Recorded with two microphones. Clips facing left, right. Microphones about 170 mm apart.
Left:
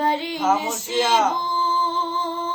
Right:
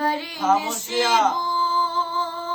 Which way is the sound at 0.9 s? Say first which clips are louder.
Left 1 dB; 25° left (ahead or behind).